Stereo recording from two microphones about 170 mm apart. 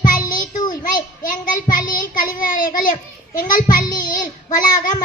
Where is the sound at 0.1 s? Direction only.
55° left (ahead or behind).